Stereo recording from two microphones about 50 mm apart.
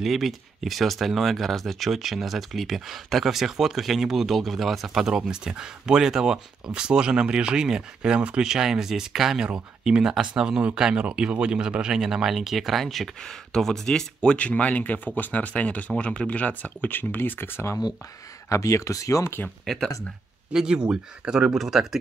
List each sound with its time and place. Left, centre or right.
0.0 s speech: centre
5.3 s speech: centre
8.5 s speech: centre
9.4 s speech: centre
14.3 s speech: left
18.5 s speech: left
19.6 s speech: centre
20.5 s speech: centre